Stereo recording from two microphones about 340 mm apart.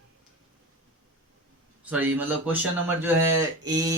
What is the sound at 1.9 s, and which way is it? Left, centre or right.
A man's voice, centre.